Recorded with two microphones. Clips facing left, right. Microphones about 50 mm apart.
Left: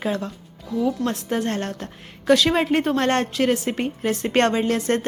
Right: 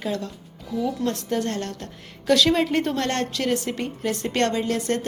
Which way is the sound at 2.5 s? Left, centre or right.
Left.